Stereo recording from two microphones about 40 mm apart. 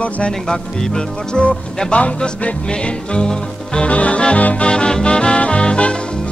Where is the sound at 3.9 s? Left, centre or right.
Left.